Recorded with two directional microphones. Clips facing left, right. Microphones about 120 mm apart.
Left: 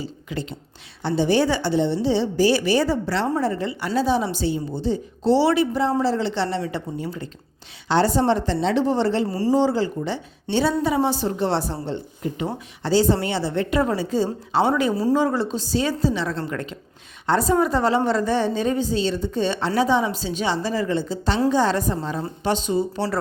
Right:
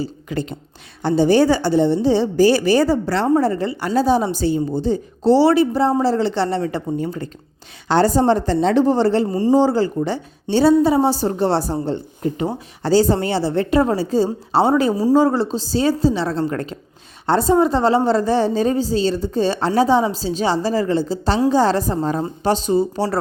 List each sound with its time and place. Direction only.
0.0 s a woman's voice: 45° right (ahead or behind)